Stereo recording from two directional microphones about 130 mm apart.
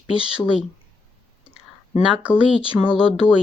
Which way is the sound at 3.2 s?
15° left (ahead or behind).